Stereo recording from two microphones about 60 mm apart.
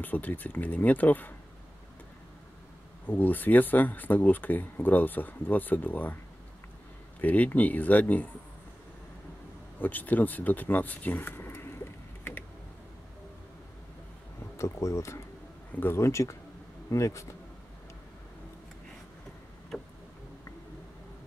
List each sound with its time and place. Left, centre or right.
0.0 s speech: left
3.1 s speech: left
7.2 s speech: left
9.8 s speech: left
14.6 s speech: left